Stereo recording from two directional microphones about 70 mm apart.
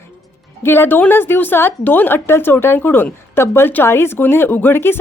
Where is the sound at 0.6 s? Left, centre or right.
Left.